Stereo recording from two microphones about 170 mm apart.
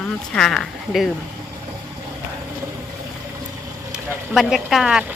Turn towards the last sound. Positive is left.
turn(degrees=-5)  # may be behind; listen again after turning